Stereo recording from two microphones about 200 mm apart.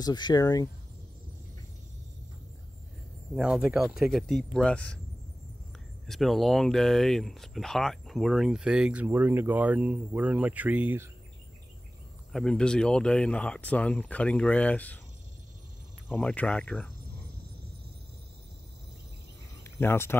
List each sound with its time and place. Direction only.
0.0 s speech: 20° left (ahead or behind)
3.3 s speech: 5° right (ahead or behind)
6.0 s speech: centre (ahead or behind)
12.3 s speech: centre (ahead or behind)
16.1 s speech: 5° left (ahead or behind)
19.6 s speech: 10° left (ahead or behind)